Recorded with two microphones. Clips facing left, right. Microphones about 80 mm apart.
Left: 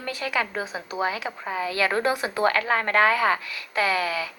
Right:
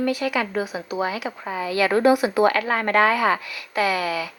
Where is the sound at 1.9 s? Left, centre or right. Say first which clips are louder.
Right 10 dB; right.